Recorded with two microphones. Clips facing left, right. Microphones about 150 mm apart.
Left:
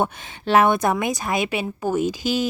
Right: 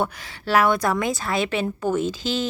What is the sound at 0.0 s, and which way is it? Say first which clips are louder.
A woman's voice: left 2 dB; 20° left (ahead or behind).